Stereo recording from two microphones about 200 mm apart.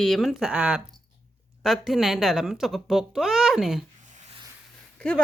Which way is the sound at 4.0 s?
40° right (ahead or behind).